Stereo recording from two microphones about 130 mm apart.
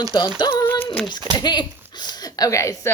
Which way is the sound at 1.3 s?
35° left (ahead or behind).